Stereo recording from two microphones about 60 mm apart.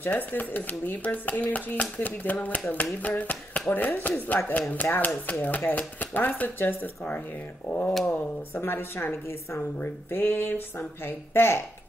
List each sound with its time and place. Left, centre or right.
0.0 s a woman's voice: left